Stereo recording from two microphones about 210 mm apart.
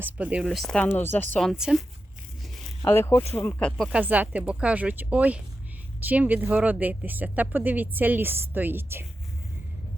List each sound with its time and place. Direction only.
0.0 s speech: 5° right (ahead or behind)
2.4 s zipper: centre (ahead or behind)
2.8 s speech: 10° left (ahead or behind); by 9.0 s 10° right (ahead or behind)